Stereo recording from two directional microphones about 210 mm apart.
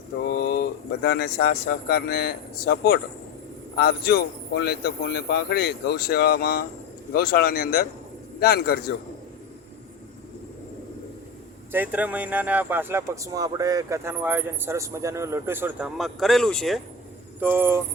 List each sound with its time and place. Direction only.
0.3 s a sound: 45° left (ahead or behind)
1.0 s speech: 50° left (ahead or behind)
11.7 s speech: 10° right (ahead or behind)
17.4 s speech: 10° right (ahead or behind)